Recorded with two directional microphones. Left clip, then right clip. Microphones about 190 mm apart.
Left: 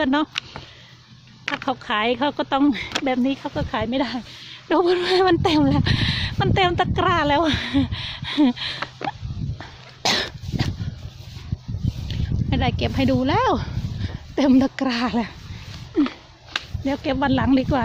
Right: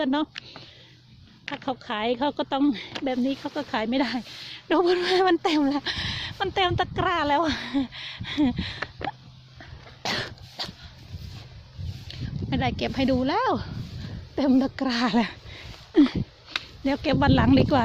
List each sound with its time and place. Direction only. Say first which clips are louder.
0.0 s speech: left 5 dB; 10° right (ahead or behind)
1.5 s speech: left 6 dB; 15° right (ahead or behind)
3.5 s speech: left 3 dB; 25° right (ahead or behind); by 9.1 s 5° left (ahead or behind)
10.0 s cough: left 8 dB; 5° left (ahead or behind)
12.0 s speech: left 3 dB; 20° right (ahead or behind)
14.8 s speech: left 1 dB; 25° right (ahead or behind)
15.9 s a sound: right 2 dB; 45° right (ahead or behind)
16.5 s speech: left 2 dB; 30° right (ahead or behind)